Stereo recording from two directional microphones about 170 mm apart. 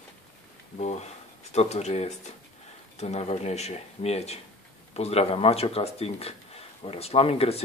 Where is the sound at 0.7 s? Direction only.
40° left (ahead or behind).